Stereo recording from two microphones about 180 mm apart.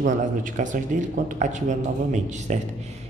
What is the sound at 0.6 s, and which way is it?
Speech, 45° right (ahead or behind).